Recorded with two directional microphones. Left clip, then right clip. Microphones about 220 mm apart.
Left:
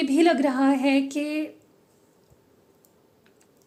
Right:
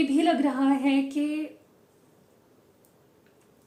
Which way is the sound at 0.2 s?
50° left (ahead or behind).